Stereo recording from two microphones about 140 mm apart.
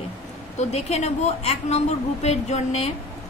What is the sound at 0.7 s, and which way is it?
A woman's voice, 50° left (ahead or behind).